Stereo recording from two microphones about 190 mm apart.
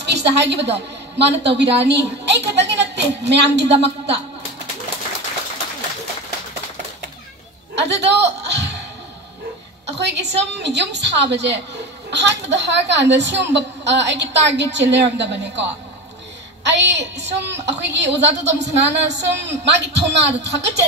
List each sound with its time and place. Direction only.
0.0 s a woman's voice: 65° right (ahead or behind)
7.7 s chuckle: 65° right (ahead or behind)
9.9 s a woman's voice: 65° right (ahead or behind)